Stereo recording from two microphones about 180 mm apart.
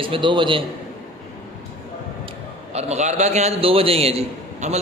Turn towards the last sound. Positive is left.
turn(degrees=-35)  # may be behind; listen again after turning